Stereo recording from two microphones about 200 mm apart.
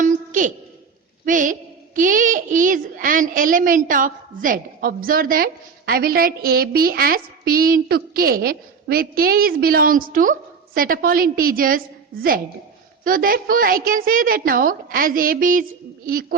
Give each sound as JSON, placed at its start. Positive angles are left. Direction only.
{"t": 0.0, "sound": "a sound", "side_deg": -40}
{"t": 1.2, "sound": "a woman's voice", "side_deg": -40}
{"t": 13.1, "sound": "a woman's voice", "side_deg": -45}